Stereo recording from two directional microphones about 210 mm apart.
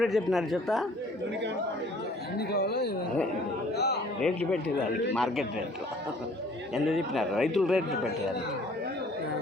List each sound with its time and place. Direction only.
0.0 s a man's voice: centre (ahead or behind)
2.5 s speech: 50° left (ahead or behind)
3.8 s a sound: 50° left (ahead or behind)
4.2 s a man's voice: 5° left (ahead or behind)
6.7 s a man's voice: centre (ahead or behind)